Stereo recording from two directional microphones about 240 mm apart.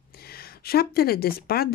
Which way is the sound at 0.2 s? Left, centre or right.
Left.